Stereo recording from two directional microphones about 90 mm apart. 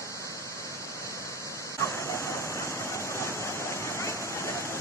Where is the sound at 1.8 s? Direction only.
35° left (ahead or behind).